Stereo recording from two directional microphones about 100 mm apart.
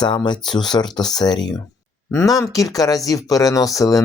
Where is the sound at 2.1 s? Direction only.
30° left (ahead or behind).